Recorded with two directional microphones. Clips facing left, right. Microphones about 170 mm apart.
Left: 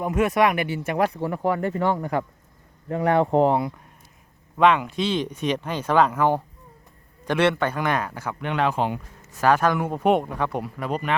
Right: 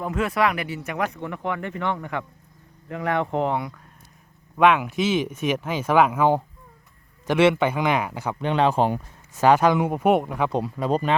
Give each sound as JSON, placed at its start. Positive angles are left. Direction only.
{"t": 0.0, "sound": "speech", "side_deg": 20}
{"t": 4.5, "sound": "speech", "side_deg": -5}
{"t": 8.4, "sound": "speech", "side_deg": -30}
{"t": 9.4, "sound": "speech", "side_deg": -15}
{"t": 10.5, "sound": "speech", "side_deg": -25}